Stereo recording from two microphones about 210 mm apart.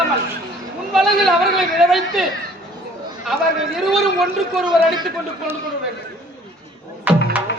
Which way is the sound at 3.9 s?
Centre (ahead or behind).